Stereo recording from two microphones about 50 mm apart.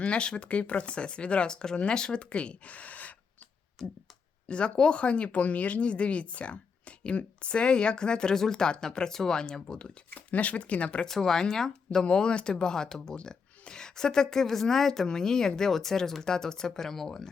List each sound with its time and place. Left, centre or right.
0.0 s speech: left
3.8 s speech: centre
10.1 s speech: left
11.0 s speech: centre